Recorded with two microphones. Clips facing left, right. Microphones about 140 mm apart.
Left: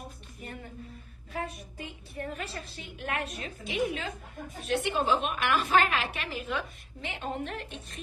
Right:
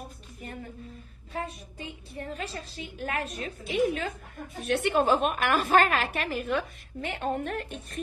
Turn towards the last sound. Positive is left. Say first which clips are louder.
# right 5 dB
turn(degrees=-50)  # may be behind; listen again after turning